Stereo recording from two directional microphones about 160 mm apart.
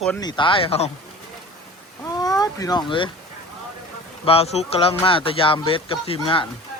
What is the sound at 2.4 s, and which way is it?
Speech, 25° left (ahead or behind).